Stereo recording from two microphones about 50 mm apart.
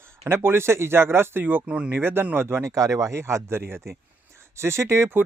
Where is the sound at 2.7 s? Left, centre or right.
Right.